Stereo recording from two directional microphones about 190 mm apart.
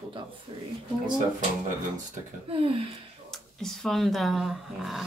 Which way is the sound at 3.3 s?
Centre (ahead or behind).